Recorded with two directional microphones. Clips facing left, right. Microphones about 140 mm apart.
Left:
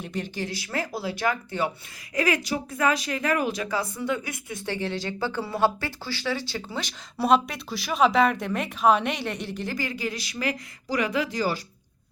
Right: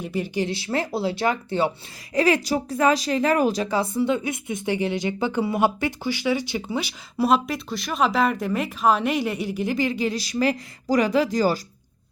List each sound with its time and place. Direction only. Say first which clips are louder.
0.0 s speech: right 6 dB; 5° right (ahead or behind)
0.5 s speech: right 5 dB; 25° right (ahead or behind); by 9.7 s 10° right (ahead or behind)
9.7 s speech: right 8 dB; 20° right (ahead or behind); by 11.6 s 40° right (ahead or behind)